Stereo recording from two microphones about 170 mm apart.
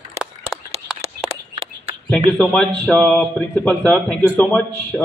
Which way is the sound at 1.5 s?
35° right (ahead or behind).